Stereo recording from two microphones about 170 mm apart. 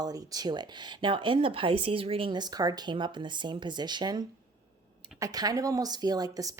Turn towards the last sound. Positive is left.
turn(degrees=-20)  # may be behind; listen again after turning